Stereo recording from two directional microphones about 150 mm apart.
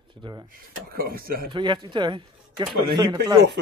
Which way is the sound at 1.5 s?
30° right (ahead or behind).